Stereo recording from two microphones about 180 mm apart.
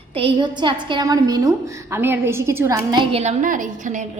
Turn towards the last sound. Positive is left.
turn(degrees=-45)  # may be behind; listen again after turning